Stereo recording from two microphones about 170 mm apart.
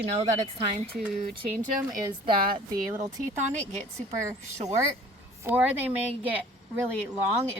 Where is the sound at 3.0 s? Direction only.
45° right (ahead or behind).